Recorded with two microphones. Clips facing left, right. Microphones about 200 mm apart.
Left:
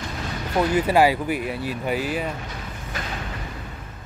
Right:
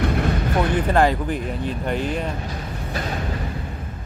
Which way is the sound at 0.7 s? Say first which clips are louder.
Left 2 dB; 10° left (ahead or behind).